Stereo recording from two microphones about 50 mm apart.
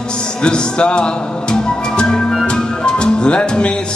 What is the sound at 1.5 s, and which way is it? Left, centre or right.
Music, centre.